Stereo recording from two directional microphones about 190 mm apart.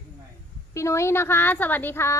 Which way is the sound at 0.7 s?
15° left (ahead or behind).